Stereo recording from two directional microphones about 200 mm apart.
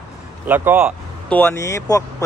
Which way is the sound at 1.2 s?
10° left (ahead or behind).